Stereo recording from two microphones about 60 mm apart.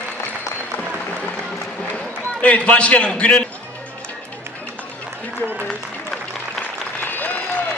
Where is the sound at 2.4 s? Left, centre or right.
Left.